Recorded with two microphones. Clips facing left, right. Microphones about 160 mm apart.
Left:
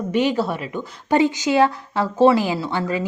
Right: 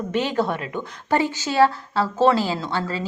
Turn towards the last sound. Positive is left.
turn(degrees=15)  # may be behind; listen again after turning